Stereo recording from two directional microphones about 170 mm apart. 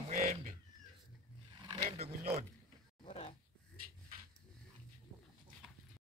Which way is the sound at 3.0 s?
35° left (ahead or behind).